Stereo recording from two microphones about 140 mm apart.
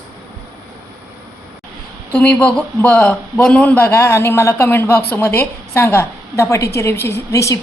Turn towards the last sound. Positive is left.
turn(degrees=20)  # may be behind; listen again after turning